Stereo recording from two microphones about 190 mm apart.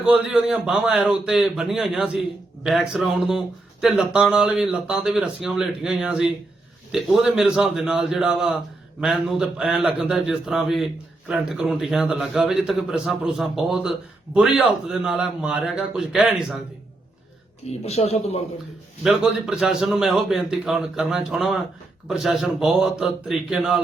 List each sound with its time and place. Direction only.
0.0 s a man's voice: 5° right (ahead or behind)
17.7 s speech: 35° left (ahead or behind)
19.0 s a man's voice: centre (ahead or behind)